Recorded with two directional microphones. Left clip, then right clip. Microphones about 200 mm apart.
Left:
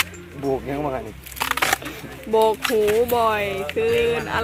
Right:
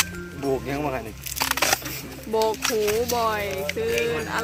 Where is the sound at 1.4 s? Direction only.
30° right (ahead or behind).